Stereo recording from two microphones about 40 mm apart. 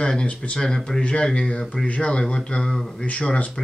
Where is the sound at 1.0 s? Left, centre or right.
Left.